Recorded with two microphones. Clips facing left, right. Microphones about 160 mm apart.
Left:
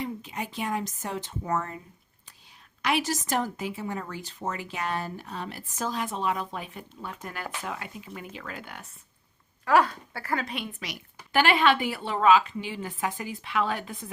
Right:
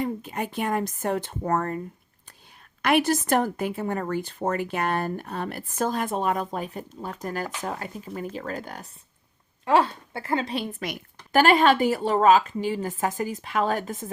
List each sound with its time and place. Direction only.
0.0 s speech: 50° right (ahead or behind)
2.8 s a woman's voice: 55° right (ahead or behind); by 8.9 s 40° right (ahead or behind)
9.6 s a woman's voice: 25° right (ahead or behind); by 14.1 s 45° right (ahead or behind)